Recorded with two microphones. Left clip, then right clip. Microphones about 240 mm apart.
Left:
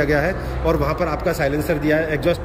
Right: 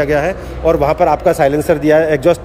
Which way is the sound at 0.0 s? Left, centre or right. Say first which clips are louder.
Right 5 dB; centre.